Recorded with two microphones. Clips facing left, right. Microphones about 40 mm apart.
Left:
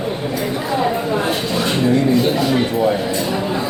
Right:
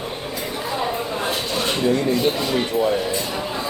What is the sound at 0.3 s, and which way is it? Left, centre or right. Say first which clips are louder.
Chatter: left 5 dB; centre.